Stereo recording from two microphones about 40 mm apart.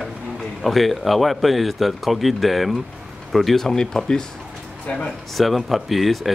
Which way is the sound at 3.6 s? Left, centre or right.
Centre.